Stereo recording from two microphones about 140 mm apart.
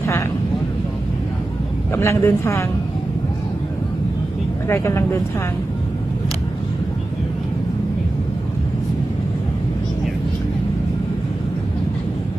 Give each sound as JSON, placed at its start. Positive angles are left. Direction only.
{"t": 0.0, "sound": "vehicle", "side_deg": 15}
{"t": 1.9, "sound": "a woman's voice", "side_deg": 20}
{"t": 4.7, "sound": "a woman's voice", "side_deg": 20}